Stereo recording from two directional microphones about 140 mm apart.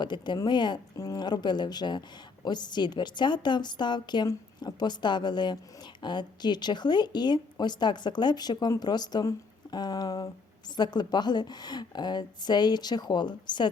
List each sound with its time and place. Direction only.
0.0 s speech: 30° left (ahead or behind)